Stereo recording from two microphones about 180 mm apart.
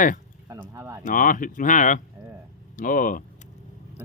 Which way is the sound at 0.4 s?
15° right (ahead or behind).